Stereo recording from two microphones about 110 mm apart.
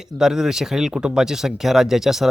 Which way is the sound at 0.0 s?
5° right (ahead or behind).